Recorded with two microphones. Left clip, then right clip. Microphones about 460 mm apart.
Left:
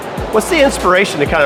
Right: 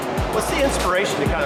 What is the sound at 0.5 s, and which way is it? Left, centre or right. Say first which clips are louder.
Speech: left 10 dB; left.